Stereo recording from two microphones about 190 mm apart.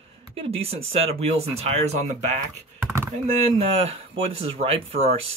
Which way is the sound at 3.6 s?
30° right (ahead or behind).